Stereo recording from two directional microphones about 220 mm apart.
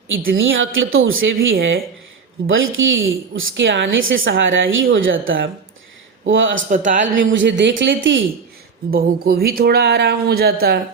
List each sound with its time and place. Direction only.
0.3 s a woman's voice: 60° right (ahead or behind)
6.7 s a man's voice: 35° right (ahead or behind)
7.0 s a woman's voice: 60° right (ahead or behind)
8.9 s speech: 40° right (ahead or behind)